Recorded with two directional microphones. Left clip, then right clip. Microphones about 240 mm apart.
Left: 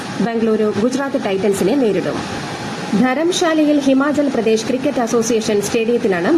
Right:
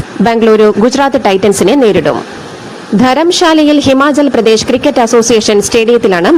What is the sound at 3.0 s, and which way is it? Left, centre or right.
A woman's voice, right.